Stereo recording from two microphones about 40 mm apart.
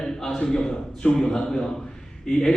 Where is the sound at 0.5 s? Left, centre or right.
Centre.